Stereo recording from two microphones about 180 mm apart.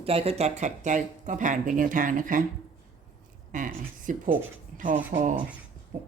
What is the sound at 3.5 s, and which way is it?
Speech, 45° right (ahead or behind).